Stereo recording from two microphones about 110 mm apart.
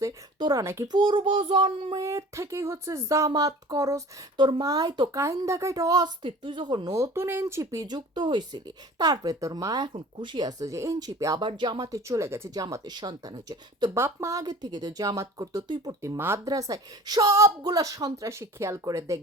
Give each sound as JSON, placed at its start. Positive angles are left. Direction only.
{"t": 0.3, "sound": "speech", "side_deg": -45}
{"t": 0.6, "sound": "speech", "side_deg": -25}
{"t": 0.9, "sound": "speech", "side_deg": -50}
{"t": 2.0, "sound": "speech", "side_deg": -25}
{"t": 4.4, "sound": "speech", "side_deg": -45}
{"t": 12.6, "sound": "speech", "side_deg": -40}
{"t": 13.9, "sound": "speech", "side_deg": -25}